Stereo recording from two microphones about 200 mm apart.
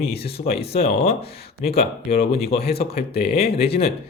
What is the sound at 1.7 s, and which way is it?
Speech, 50° left (ahead or behind).